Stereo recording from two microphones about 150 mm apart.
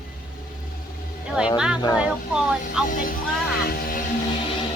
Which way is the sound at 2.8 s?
65° left (ahead or behind).